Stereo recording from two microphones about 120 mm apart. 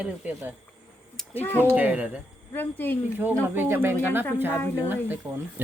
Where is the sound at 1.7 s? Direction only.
10° right (ahead or behind).